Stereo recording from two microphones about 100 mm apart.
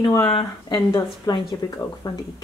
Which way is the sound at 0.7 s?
35° left (ahead or behind).